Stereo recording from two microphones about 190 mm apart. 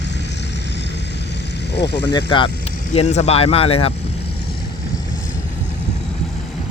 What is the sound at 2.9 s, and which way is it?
Speech, 35° left (ahead or behind).